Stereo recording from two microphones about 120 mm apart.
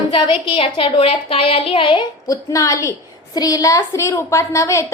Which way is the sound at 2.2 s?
30° left (ahead or behind).